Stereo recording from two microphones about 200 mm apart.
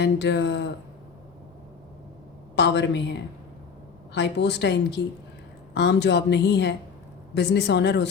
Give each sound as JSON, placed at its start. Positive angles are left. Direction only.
{"t": 0.0, "sound": "speech", "side_deg": 60}
{"t": 2.6, "sound": "speech", "side_deg": 60}